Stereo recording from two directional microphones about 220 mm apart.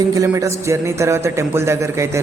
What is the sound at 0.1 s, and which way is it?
Speech, 15° right (ahead or behind).